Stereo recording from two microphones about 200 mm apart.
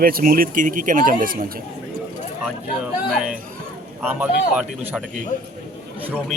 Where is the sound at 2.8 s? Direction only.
5° right (ahead or behind).